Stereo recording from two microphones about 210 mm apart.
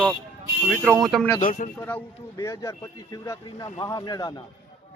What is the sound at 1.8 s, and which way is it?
A man's voice, 10° left (ahead or behind).